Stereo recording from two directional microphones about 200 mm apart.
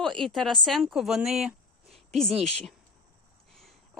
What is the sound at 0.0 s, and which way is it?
Speech, 5° left (ahead or behind).